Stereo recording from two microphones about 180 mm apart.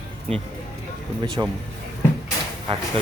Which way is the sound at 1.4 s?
20° right (ahead or behind).